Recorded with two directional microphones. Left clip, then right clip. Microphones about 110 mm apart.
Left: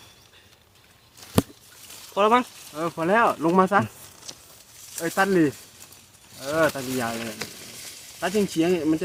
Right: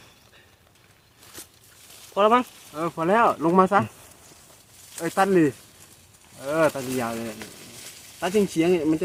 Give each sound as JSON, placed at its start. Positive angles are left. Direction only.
{"t": 2.1, "sound": "speech", "side_deg": -45}
{"t": 2.7, "sound": "speech", "side_deg": -10}
{"t": 5.0, "sound": "speech", "side_deg": -20}
{"t": 8.2, "sound": "speech", "side_deg": -25}